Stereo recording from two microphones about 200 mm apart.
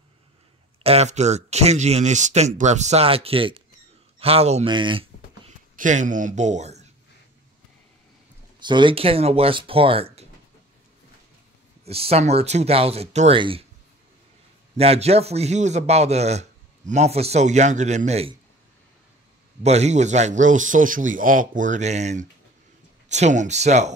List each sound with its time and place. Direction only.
0.8 s a man's voice: 35° right (ahead or behind)
5.8 s a man's voice: 40° right (ahead or behind)
8.6 s speech: 25° right (ahead or behind)
11.8 s a man's voice: 30° right (ahead or behind)
14.8 s a man's voice: 30° right (ahead or behind)
19.6 s a man's voice: 35° right (ahead or behind)